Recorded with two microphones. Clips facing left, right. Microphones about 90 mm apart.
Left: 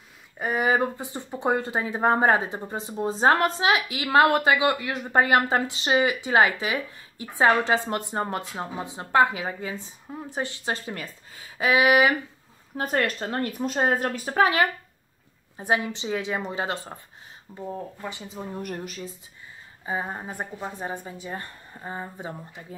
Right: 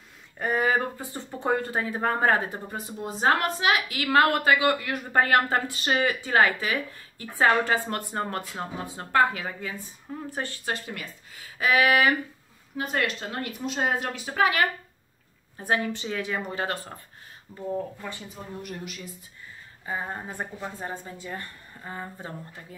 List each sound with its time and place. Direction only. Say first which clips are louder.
0.4 s speech: left 1 dB; 15° left (ahead or behind); by 11.4 s 30° left (ahead or behind)
11.5 s speech: left 2 dB; 20° left (ahead or behind)
12.7 s a woman's voice: left 3 dB; 45° left (ahead or behind)
15.5 s a woman's voice: left 1 dB; 20° left (ahead or behind)
18.6 s a woman's voice: left 3 dB; 40° left (ahead or behind)
19.9 s a woman's voice: left 2 dB; 15° left (ahead or behind)